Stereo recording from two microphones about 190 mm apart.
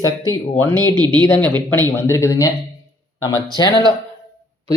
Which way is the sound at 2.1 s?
15° left (ahead or behind).